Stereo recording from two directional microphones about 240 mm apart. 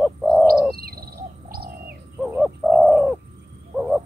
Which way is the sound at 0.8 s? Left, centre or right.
Right.